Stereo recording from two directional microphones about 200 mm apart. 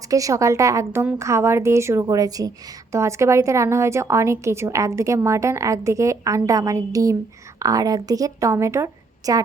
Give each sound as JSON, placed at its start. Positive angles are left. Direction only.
{"t": 0.1, "sound": "a woman's voice", "side_deg": -15}